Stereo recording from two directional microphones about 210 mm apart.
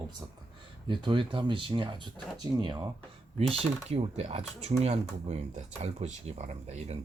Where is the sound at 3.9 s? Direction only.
30° right (ahead or behind).